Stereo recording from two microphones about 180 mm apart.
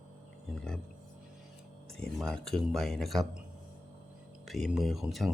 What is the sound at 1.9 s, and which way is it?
Speech, 5° left (ahead or behind).